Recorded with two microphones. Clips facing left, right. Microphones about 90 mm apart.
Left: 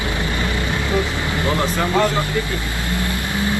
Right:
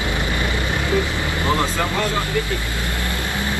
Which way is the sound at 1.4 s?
20° right (ahead or behind).